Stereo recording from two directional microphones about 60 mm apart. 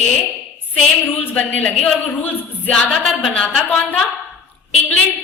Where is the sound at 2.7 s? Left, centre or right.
Centre.